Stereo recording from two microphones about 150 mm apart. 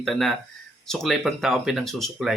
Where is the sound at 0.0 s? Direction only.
Centre (ahead or behind).